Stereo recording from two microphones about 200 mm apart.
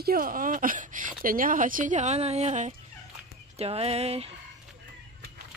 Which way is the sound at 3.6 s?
30° right (ahead or behind).